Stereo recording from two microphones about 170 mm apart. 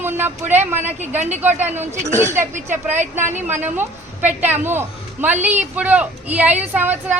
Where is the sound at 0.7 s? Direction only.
10° right (ahead or behind).